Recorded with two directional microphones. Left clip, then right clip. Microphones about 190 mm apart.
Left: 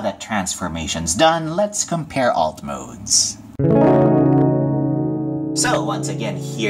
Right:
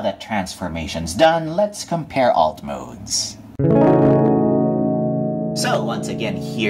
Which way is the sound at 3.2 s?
Centre (ahead or behind).